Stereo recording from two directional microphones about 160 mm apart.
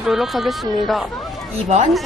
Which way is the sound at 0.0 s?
Centre (ahead or behind).